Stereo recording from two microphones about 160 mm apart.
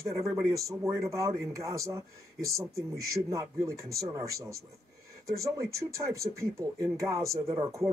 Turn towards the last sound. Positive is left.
turn(degrees=-20)  # may be behind; listen again after turning